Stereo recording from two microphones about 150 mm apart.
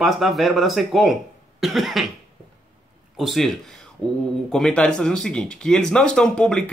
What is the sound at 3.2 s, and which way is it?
Speech, centre (ahead or behind).